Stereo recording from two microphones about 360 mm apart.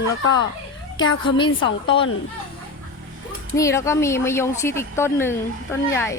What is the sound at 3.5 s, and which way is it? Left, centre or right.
Speech, centre.